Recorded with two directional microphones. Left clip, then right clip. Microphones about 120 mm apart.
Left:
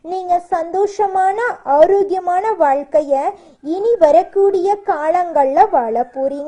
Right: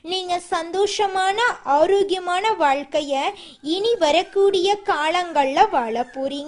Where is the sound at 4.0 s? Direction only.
40° right (ahead or behind).